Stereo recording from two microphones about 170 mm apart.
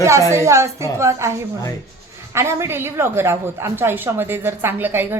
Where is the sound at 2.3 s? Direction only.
15° right (ahead or behind).